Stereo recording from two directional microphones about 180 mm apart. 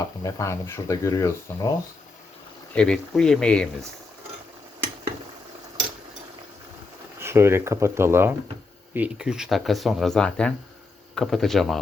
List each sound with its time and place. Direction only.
0.2 s speech: 15° left (ahead or behind)
2.7 s speech: 5° left (ahead or behind)
7.2 s speech: 15° right (ahead or behind); by 11.8 s centre (ahead or behind)